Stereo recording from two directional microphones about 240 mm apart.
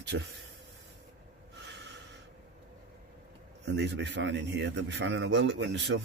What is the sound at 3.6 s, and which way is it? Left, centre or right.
A man's voice, right.